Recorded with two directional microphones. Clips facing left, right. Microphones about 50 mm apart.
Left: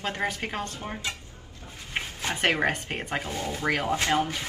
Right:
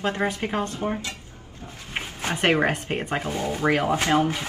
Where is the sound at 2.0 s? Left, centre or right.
Right.